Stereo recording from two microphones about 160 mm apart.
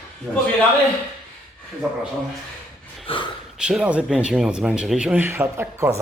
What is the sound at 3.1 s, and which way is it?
Speech, 35° left (ahead or behind).